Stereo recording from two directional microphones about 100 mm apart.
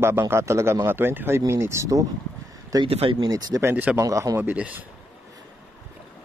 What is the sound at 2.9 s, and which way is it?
Speech, 75° right (ahead or behind).